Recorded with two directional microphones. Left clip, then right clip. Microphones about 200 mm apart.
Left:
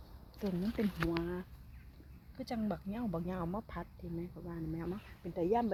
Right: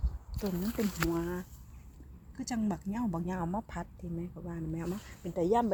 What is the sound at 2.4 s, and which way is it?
Speech, 5° right (ahead or behind).